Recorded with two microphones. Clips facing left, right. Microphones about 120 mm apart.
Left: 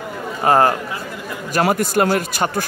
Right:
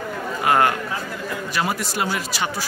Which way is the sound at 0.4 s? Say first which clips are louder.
Left 4 dB; 35° left (ahead or behind).